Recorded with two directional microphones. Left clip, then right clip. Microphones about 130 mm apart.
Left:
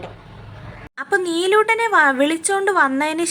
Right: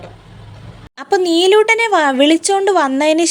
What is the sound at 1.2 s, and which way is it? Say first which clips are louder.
A woman's voice: right 7 dB; 45° right (ahead or behind).